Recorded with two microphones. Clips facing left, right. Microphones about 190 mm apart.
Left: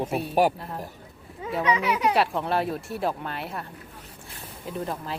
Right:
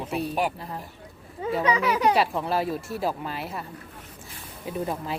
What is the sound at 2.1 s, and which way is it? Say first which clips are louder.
A woman's voice: even; centre (ahead or behind).